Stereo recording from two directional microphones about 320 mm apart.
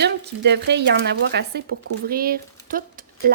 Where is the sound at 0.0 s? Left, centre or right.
Right.